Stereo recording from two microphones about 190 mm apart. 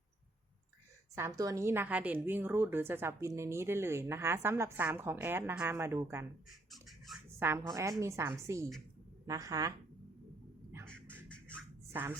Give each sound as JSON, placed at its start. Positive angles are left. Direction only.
{"t": 1.1, "sound": "speech", "side_deg": -15}
{"t": 6.7, "sound": "a sound", "side_deg": 0}
{"t": 7.3, "sound": "speech", "side_deg": -10}
{"t": 10.8, "sound": "music", "side_deg": 5}